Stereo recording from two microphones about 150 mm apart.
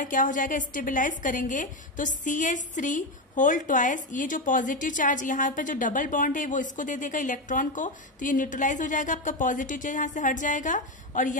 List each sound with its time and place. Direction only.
0.0 s a woman's voice: 60° left (ahead or behind)